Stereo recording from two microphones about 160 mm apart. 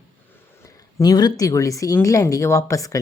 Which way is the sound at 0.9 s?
25° left (ahead or behind).